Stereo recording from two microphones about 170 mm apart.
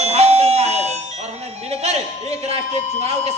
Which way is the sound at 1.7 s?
35° right (ahead or behind).